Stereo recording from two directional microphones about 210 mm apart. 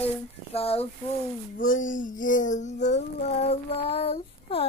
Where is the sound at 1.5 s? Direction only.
40° left (ahead or behind).